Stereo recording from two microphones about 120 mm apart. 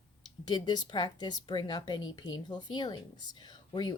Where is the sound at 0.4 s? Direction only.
35° left (ahead or behind).